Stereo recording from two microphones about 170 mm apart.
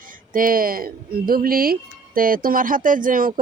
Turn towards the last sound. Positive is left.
turn(degrees=-55)  # may be behind; listen again after turning